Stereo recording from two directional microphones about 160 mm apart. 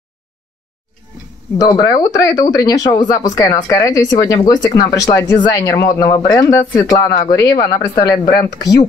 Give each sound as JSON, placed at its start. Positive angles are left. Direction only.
{"t": 1.6, "sound": "speech", "side_deg": 20}